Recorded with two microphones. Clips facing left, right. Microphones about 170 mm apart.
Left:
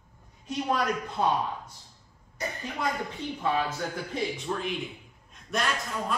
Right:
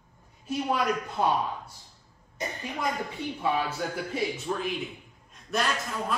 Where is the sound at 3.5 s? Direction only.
10° right (ahead or behind).